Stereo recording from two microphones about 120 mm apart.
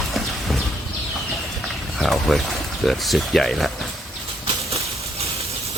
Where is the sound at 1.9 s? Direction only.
Centre (ahead or behind).